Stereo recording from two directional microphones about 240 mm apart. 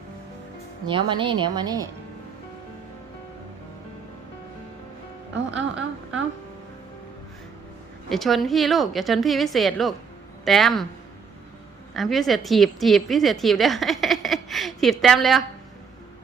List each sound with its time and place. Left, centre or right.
0.9 s speech: centre
8.1 s a woman's voice: centre
11.9 s a woman's voice: centre